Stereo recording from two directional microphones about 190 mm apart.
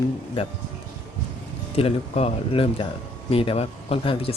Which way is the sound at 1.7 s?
35° left (ahead or behind).